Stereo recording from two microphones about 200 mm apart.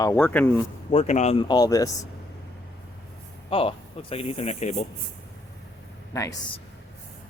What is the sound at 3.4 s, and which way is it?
Speech, 25° left (ahead or behind).